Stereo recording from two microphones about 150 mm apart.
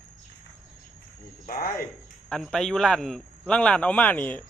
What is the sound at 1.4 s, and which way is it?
Speech, 70° left (ahead or behind).